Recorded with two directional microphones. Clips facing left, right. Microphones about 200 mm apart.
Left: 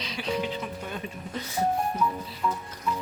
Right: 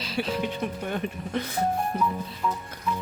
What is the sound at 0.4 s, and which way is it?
Speech, 55° right (ahead or behind).